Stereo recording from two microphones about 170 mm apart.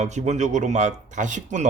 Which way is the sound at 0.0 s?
45° right (ahead or behind).